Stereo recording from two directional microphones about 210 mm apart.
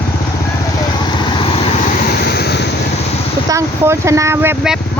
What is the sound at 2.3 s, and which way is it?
Vehicle, 50° left (ahead or behind).